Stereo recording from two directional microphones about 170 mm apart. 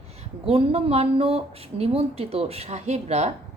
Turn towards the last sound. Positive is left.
turn(degrees=-40)  # may be behind; listen again after turning